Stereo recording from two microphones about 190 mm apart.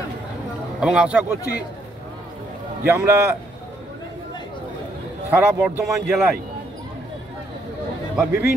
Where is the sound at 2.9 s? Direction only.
15° right (ahead or behind).